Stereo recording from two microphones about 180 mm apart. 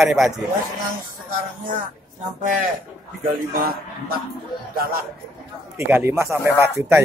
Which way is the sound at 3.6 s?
55° right (ahead or behind).